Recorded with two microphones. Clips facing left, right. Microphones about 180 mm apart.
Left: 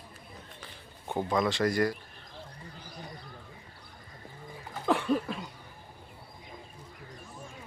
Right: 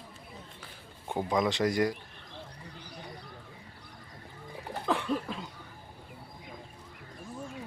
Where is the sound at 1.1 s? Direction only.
15° right (ahead or behind).